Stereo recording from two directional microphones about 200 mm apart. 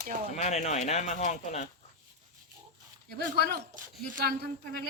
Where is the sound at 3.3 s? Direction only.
55° right (ahead or behind).